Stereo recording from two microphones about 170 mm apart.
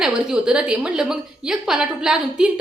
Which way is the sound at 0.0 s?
5° right (ahead or behind).